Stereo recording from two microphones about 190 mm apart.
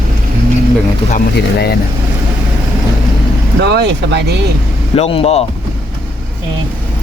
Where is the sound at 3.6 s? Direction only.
60° right (ahead or behind).